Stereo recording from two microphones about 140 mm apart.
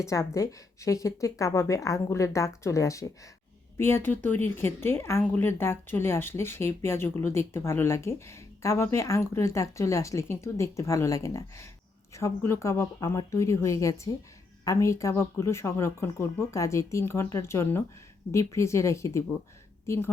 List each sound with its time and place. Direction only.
0.0 s a woman's voice: 20° left (ahead or behind)